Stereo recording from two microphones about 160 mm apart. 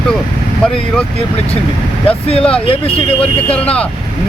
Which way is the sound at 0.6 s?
5° left (ahead or behind).